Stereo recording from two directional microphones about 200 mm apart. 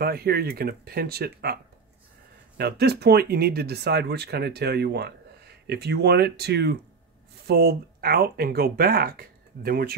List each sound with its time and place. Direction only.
0.0 s speech: 50° right (ahead or behind)